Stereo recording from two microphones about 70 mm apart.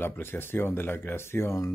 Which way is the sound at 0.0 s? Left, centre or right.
Left.